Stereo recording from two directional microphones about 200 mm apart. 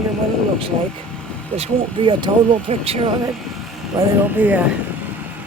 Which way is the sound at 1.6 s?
25° right (ahead or behind).